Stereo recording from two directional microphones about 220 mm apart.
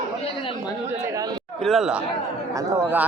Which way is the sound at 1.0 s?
15° right (ahead or behind).